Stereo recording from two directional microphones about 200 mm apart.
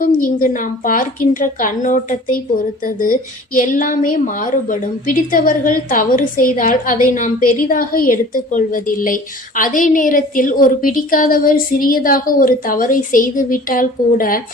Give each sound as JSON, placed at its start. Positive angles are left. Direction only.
{"t": 0.0, "sound": "a woman's voice", "side_deg": 45}